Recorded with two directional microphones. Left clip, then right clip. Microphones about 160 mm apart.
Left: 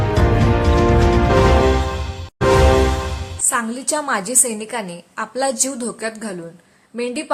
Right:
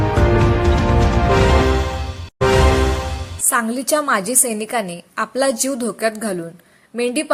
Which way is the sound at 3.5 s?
25° right (ahead or behind).